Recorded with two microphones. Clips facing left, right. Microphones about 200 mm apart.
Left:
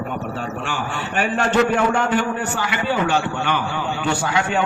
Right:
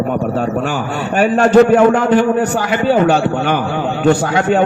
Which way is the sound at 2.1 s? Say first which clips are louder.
Right 9 dB; 40° right (ahead or behind).